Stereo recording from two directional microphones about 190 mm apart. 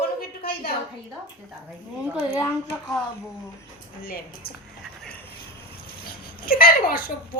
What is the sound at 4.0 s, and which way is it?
Speech, 50° left (ahead or behind).